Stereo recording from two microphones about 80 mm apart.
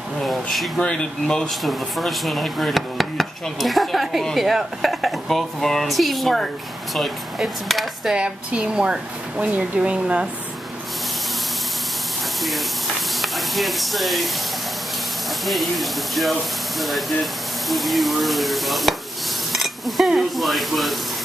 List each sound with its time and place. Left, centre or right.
0.2 s speech: centre
0.7 s speech: centre
8.2 s speech: centre
13.2 s speech: centre
15.4 s speech: centre
19.5 s stir: centre